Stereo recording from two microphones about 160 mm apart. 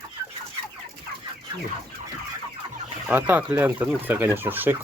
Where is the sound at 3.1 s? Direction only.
10° right (ahead or behind).